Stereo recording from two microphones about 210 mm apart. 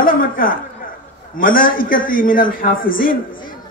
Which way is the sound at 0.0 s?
40° left (ahead or behind).